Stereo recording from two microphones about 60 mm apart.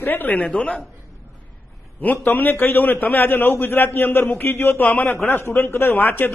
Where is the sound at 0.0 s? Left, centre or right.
Left.